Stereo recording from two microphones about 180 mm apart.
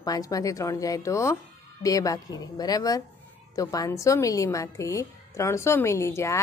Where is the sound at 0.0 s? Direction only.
20° left (ahead or behind).